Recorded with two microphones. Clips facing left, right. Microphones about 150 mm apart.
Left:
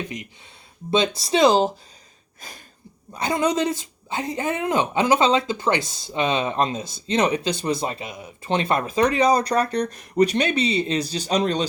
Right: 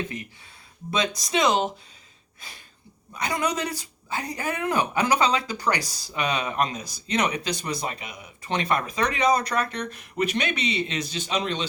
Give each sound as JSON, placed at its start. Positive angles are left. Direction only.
{"t": 0.9, "sound": "speech", "side_deg": 30}
{"t": 2.4, "sound": "a sound", "side_deg": 45}
{"t": 3.2, "sound": "speech", "side_deg": 30}